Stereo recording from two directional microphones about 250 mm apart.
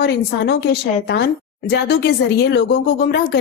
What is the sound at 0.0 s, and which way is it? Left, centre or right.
A woman's voice, left.